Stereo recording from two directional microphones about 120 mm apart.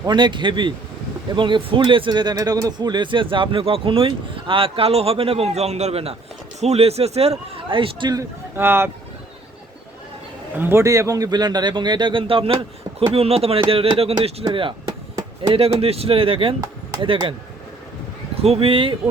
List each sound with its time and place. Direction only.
0.0 s a man's voice: 40° right (ahead or behind)
8.2 s speech: 20° right (ahead or behind)
10.6 s a man's voice: 20° right (ahead or behind); by 14.4 s 55° right (ahead or behind)
15.4 s a man's voice: 55° right (ahead or behind)
18.4 s a man's voice: 55° right (ahead or behind)